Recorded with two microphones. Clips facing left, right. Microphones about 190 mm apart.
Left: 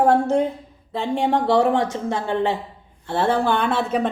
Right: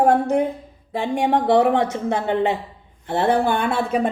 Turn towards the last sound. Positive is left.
turn(degrees=-10)  # may be behind; listen again after turning